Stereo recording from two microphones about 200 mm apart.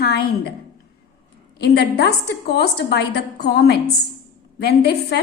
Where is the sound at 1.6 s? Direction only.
55° left (ahead or behind).